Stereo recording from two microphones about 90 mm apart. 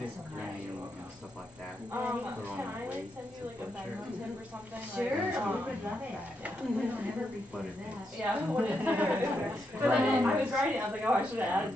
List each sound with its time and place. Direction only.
1.9 s speech: 20° right (ahead or behind)
4.9 s a woman's voice: 15° right (ahead or behind)
8.2 s a woman's voice: 15° right (ahead or behind)